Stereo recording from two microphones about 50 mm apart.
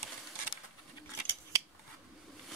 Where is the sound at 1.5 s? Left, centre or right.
Right.